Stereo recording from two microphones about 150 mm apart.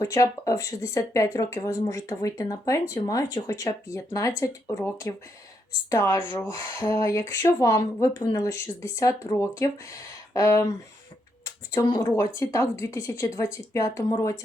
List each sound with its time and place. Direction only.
0.0 s speech: 20° left (ahead or behind)
11.7 s speech: 25° left (ahead or behind)